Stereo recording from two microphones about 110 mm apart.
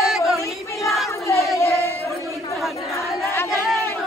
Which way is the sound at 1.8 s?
25° left (ahead or behind).